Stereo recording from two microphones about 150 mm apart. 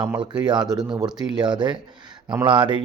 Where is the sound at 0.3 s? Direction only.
30° right (ahead or behind).